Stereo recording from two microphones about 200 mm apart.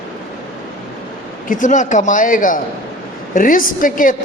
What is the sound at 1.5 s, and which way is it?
A man's voice, 40° left (ahead or behind).